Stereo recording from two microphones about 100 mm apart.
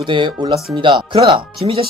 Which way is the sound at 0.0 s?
55° right (ahead or behind).